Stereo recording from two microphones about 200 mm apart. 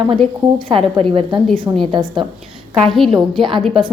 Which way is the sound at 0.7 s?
25° right (ahead or behind).